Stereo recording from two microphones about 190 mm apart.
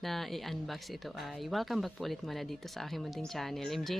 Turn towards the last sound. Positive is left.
turn(degrees=0)  # may be behind; listen again after turning